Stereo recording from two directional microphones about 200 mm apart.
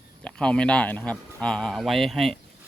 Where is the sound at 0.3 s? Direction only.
5° left (ahead or behind).